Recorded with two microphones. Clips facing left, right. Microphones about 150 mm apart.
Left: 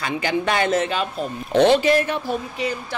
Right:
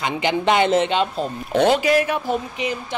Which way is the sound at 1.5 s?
10° right (ahead or behind).